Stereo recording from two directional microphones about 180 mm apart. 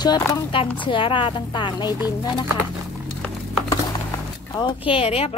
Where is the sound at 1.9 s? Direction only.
10° right (ahead or behind).